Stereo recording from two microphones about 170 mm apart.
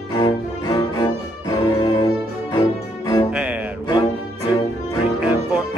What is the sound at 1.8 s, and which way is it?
Music, 25° left (ahead or behind).